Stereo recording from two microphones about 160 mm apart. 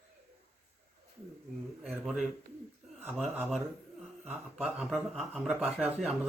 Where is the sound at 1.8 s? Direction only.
Centre (ahead or behind).